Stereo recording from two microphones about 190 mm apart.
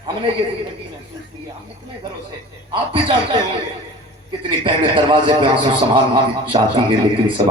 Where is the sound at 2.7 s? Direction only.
25° right (ahead or behind).